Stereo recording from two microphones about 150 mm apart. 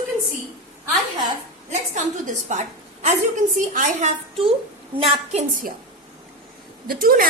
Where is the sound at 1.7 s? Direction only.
50° right (ahead or behind).